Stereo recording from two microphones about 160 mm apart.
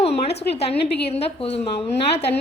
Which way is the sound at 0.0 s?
40° left (ahead or behind).